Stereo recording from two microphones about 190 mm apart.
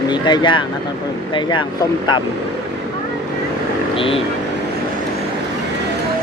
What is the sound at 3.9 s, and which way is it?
Speech, 30° left (ahead or behind).